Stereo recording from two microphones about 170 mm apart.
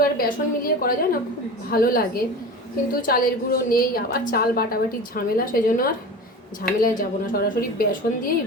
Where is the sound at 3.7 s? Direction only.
60° left (ahead or behind).